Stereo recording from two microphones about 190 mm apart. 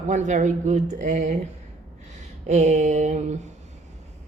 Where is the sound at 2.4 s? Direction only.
40° right (ahead or behind).